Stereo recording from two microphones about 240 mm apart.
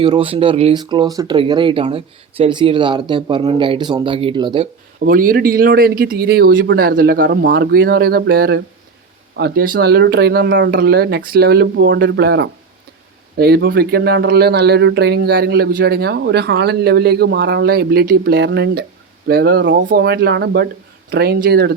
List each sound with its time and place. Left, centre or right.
0.0 s speech: right
5.0 s speech: right